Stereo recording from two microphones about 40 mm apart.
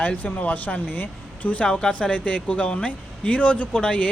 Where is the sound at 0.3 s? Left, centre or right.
Left.